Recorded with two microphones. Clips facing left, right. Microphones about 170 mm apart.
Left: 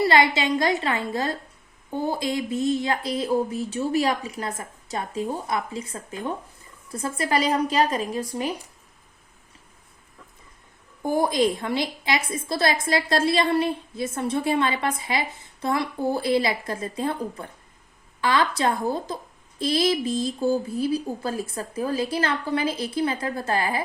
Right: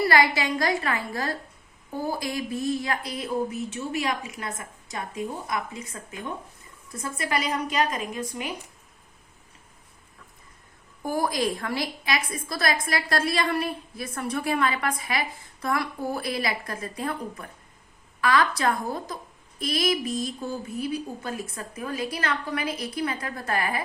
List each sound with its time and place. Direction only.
0.0 s a woman's voice: 25° left (ahead or behind)
11.0 s a woman's voice: 20° left (ahead or behind)